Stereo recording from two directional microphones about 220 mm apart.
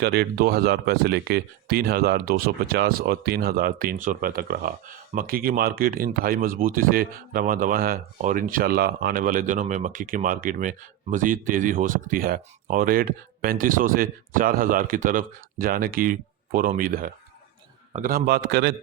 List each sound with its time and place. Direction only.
0.0 s speech: 45° right (ahead or behind)